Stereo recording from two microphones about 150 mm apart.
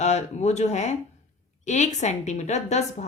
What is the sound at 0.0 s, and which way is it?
A woman's voice, 50° left (ahead or behind).